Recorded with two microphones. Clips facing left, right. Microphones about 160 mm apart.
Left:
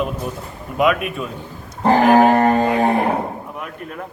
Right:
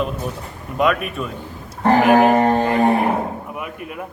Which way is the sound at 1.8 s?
5° right (ahead or behind).